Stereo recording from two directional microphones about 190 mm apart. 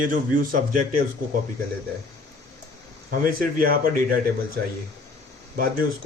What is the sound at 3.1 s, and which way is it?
Speech, 50° right (ahead or behind).